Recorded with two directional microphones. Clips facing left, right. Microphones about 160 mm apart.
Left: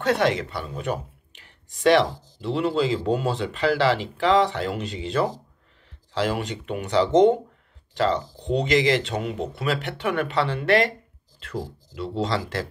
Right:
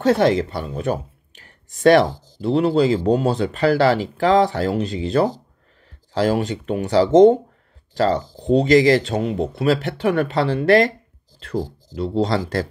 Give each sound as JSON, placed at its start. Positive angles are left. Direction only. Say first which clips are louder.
{"t": 0.0, "sound": "speech", "louder": "right 6 dB", "side_deg": -40}